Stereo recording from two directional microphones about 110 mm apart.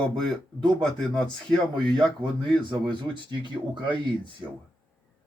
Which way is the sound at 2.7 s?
45° right (ahead or behind).